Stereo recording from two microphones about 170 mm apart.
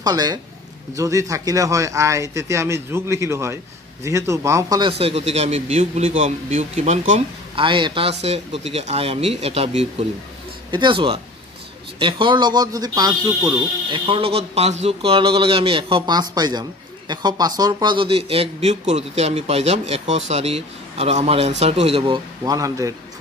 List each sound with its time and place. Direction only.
0.0 s a man's voice: 25° right (ahead or behind)